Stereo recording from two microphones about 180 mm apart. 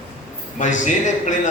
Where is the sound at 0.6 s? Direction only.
45° left (ahead or behind).